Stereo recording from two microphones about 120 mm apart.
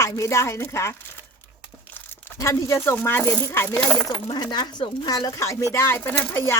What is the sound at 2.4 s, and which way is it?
Speech, 25° left (ahead or behind).